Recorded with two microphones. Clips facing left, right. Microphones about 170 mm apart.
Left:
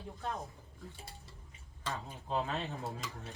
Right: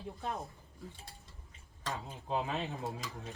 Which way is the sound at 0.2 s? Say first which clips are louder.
Even; 15° right (ahead or behind).